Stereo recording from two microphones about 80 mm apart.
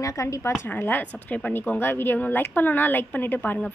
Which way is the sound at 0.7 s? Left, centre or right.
Left.